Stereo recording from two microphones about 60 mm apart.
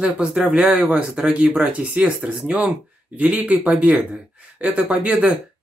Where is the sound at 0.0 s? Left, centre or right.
Centre.